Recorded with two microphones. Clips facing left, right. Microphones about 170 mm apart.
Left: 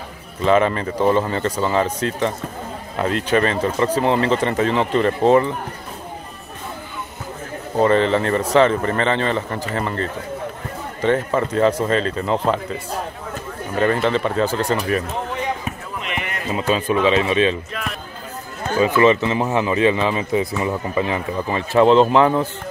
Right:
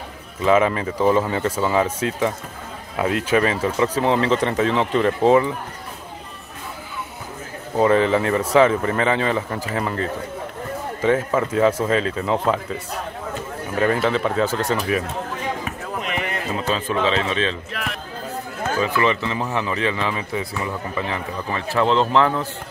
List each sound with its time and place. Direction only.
0.4 s speech: 5° right (ahead or behind)
7.7 s speech: 5° right (ahead or behind)
13.7 s speech: 5° right (ahead or behind)
16.0 s run: 40° right (ahead or behind)
16.5 s speech: 10° left (ahead or behind)
18.8 s speech: 20° left (ahead or behind)